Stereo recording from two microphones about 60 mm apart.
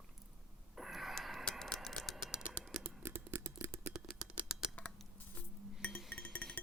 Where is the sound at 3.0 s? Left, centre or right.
Right.